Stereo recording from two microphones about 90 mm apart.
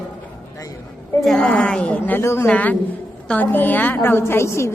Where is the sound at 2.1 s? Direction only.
25° left (ahead or behind).